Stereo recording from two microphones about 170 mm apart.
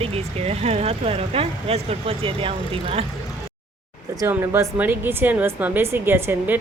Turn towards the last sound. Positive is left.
turn(degrees=-10)  # may be behind; listen again after turning